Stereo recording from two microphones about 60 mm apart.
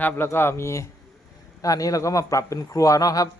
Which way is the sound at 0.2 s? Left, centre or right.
Left.